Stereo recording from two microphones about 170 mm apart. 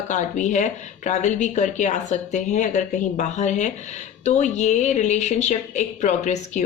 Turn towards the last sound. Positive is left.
turn(degrees=45)  # may be behind; listen again after turning